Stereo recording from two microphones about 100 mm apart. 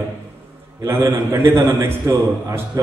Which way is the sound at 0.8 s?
30° right (ahead or behind).